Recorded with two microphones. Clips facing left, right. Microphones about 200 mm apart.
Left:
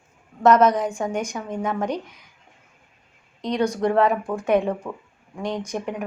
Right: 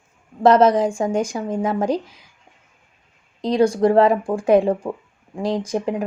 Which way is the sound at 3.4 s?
30° right (ahead or behind).